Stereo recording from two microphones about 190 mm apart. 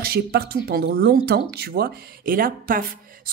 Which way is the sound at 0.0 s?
55° right (ahead or behind).